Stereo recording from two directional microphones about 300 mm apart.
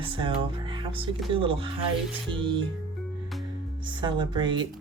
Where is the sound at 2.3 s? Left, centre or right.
Centre.